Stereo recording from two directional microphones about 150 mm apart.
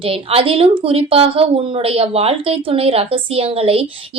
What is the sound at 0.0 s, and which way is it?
A woman's voice, 40° right (ahead or behind).